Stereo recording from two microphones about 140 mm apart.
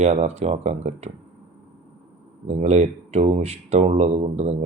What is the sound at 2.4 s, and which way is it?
Speech, 50° right (ahead or behind).